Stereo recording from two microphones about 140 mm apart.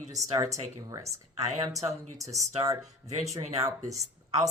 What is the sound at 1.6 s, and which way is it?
Speech, 25° right (ahead or behind).